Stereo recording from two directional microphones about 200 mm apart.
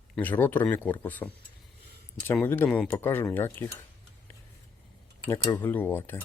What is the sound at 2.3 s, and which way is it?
Speech, 10° left (ahead or behind).